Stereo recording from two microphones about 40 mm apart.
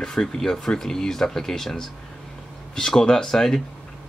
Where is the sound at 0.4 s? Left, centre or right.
Centre.